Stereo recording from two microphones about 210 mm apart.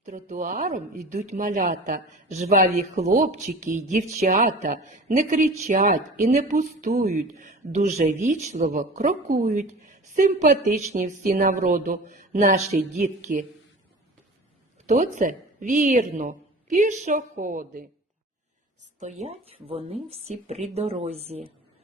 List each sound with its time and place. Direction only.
0.0 s speech: 35° right (ahead or behind)
14.8 s speech: 35° right (ahead or behind)
19.2 s speech: 30° right (ahead or behind)